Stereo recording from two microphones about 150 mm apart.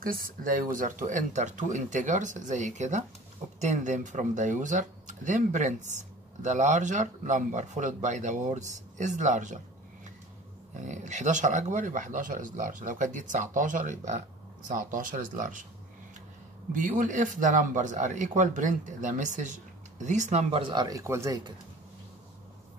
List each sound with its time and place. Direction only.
0.0 s speech: 75° right (ahead or behind); by 9.6 s 55° right (ahead or behind)
10.8 s speech: 55° right (ahead or behind)
16.7 s speech: 60° right (ahead or behind)
20.7 s speech: 25° right (ahead or behind)